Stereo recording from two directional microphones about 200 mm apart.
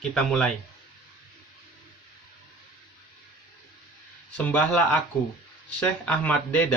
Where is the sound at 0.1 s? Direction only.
5° left (ahead or behind).